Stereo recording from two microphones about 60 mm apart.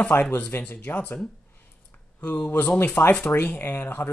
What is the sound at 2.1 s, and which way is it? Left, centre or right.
Speech, left.